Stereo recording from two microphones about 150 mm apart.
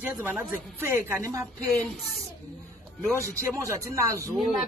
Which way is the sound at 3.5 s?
20° right (ahead or behind).